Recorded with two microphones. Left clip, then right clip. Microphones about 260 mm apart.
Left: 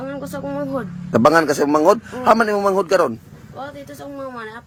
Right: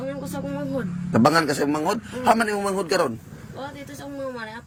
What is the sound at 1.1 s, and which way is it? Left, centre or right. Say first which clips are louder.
A man's voice: left 5 dB; centre.